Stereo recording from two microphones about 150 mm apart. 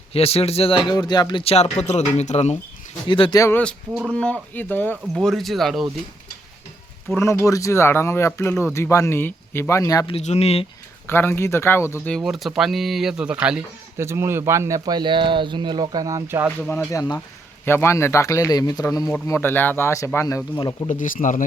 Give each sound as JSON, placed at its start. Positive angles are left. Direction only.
{"t": 0.1, "sound": "speech", "side_deg": 40}
{"t": 0.9, "sound": "a man's voice", "side_deg": 30}
{"t": 3.1, "sound": "speech", "side_deg": 30}
{"t": 3.6, "sound": "speech", "side_deg": 5}
{"t": 7.2, "sound": "a man's voice", "side_deg": 20}
{"t": 10.1, "sound": "speech", "side_deg": 45}
{"t": 11.0, "sound": "speech", "side_deg": 15}
{"t": 12.0, "sound": "speech", "side_deg": 0}
{"t": 14.0, "sound": "speech", "side_deg": -15}
{"t": 16.6, "sound": "a man's voice", "side_deg": 20}
{"t": 20.9, "sound": "speech", "side_deg": 60}